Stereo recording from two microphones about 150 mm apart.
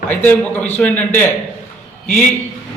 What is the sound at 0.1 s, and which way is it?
A man's voice, 10° left (ahead or behind).